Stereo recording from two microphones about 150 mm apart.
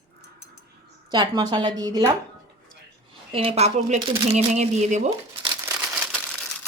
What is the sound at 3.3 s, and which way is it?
Speech, 40° right (ahead or behind).